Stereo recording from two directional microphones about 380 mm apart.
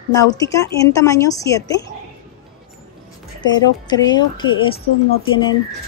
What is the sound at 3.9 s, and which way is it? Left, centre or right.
Speech, centre.